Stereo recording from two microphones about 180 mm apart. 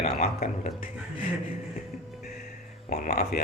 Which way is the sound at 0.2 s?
40° left (ahead or behind).